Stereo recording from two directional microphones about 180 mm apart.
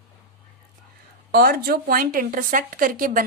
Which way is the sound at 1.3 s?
55° right (ahead or behind).